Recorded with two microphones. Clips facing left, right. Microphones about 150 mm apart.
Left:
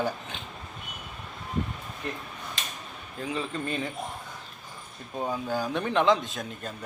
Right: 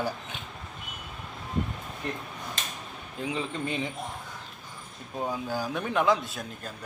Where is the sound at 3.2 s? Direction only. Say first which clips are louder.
Right 1 dB; 25° right (ahead or behind).